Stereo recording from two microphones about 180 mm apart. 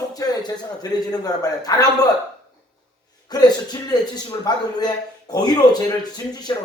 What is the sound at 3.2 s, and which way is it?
A man's voice, 20° left (ahead or behind).